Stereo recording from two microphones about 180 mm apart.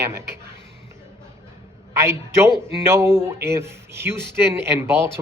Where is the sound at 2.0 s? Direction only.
15° right (ahead or behind).